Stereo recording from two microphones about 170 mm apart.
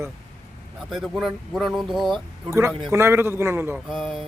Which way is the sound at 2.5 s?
15° right (ahead or behind).